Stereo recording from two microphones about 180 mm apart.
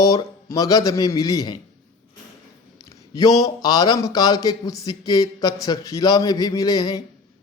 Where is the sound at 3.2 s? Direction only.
20° left (ahead or behind).